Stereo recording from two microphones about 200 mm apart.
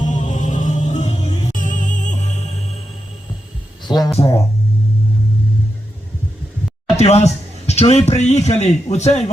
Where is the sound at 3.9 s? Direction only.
20° left (ahead or behind).